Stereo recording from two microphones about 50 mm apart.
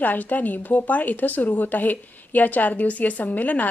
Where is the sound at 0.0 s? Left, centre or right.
Left.